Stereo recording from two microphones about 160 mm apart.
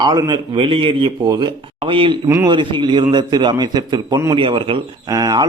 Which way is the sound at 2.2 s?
15° right (ahead or behind).